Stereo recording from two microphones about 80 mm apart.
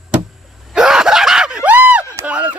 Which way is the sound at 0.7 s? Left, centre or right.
Centre.